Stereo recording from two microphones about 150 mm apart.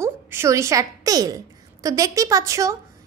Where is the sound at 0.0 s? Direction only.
20° right (ahead or behind).